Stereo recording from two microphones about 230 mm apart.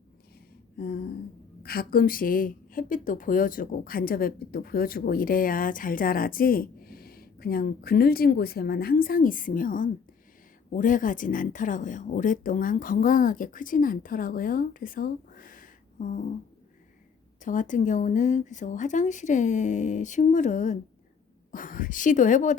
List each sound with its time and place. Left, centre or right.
1.6 s a woman's voice: left
17.4 s a woman's voice: left